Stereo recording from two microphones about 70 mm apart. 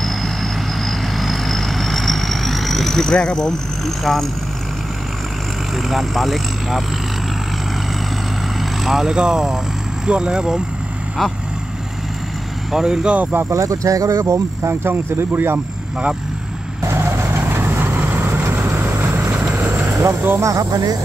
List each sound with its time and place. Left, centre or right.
0.0 s vehicle: centre
5.9 s speech: centre
8.8 s speech: centre
12.7 s speech: centre
13.5 s speech: right
16.8 s vehicle: right
19.5 s speech: right